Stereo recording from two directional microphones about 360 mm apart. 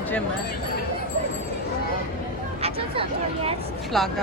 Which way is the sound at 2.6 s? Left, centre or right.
Centre.